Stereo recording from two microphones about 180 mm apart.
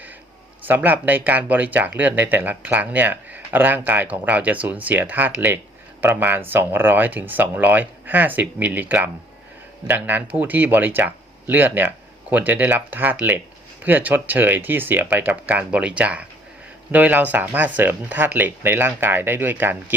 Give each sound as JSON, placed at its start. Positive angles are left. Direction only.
{"t": 0.6, "sound": "speech", "side_deg": -10}